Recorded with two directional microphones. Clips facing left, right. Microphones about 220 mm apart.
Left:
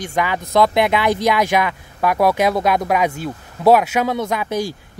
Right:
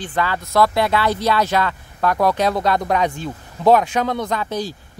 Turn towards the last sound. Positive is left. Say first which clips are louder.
# left 2 dB
turn(degrees=10)  # may be behind; listen again after turning